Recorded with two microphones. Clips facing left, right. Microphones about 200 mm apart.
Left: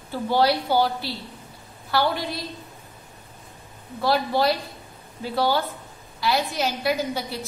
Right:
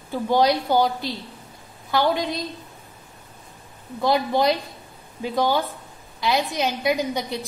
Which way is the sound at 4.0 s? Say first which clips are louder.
Right 1 dB; 20° right (ahead or behind).